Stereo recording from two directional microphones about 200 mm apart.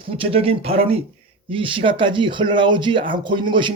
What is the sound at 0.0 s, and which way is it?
Speech, 30° right (ahead or behind).